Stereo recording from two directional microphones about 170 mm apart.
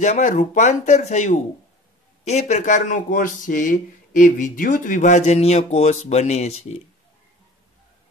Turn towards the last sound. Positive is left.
turn(degrees=40)  # may be behind; listen again after turning